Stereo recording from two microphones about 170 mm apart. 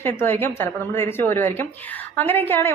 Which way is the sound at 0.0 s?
10° left (ahead or behind).